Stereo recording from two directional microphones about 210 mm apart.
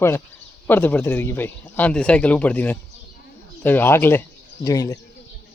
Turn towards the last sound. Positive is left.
turn(degrees=15)  # may be behind; listen again after turning